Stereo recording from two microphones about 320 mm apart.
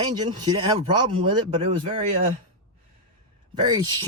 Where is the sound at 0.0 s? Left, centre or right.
Centre.